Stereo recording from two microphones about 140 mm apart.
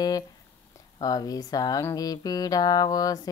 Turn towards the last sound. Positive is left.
turn(degrees=25)  # may be behind; listen again after turning